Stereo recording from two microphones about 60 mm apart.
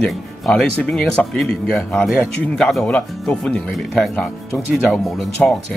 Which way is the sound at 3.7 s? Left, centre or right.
Centre.